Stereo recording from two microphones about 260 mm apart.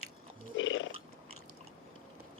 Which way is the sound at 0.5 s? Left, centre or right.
Left.